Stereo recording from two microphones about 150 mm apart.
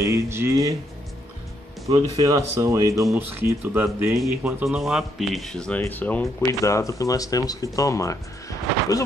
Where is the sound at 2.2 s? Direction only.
20° right (ahead or behind).